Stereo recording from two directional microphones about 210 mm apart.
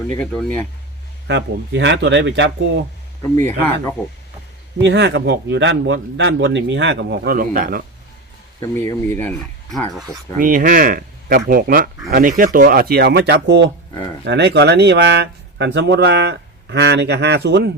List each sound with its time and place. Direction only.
0.2 s speech: 5° left (ahead or behind)
1.3 s speech: 55° right (ahead or behind)
3.3 s speech: 10° left (ahead or behind)
4.8 s speech: 55° right (ahead or behind)
8.8 s speech: 10° left (ahead or behind)
10.3 s speech: 40° right (ahead or behind)